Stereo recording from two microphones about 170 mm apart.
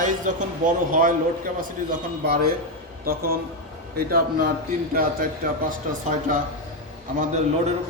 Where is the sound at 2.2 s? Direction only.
60° right (ahead or behind).